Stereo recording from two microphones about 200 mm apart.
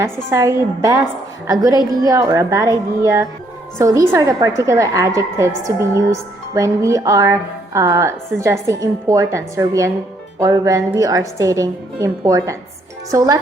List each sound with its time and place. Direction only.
0.3 s a woman's voice: 15° right (ahead or behind)